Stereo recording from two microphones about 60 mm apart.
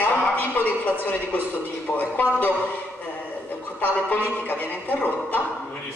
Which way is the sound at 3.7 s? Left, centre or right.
Left.